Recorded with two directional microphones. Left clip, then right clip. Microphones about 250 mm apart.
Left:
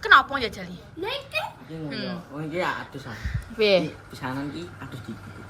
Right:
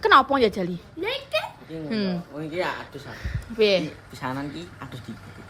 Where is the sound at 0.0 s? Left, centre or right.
Right.